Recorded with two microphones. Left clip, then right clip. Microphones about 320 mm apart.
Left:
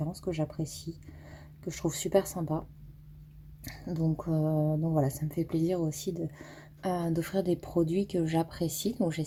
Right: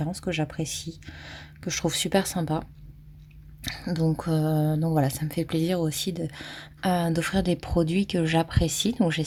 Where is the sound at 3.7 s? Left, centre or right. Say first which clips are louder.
Right 5 dB; right.